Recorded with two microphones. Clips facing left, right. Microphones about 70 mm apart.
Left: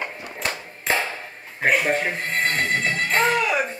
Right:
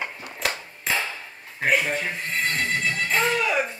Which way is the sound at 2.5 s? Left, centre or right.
Left.